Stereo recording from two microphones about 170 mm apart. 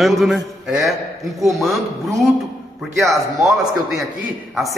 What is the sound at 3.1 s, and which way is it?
Speech, centre (ahead or behind).